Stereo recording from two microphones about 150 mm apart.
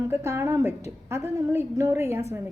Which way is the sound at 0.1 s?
15° right (ahead or behind).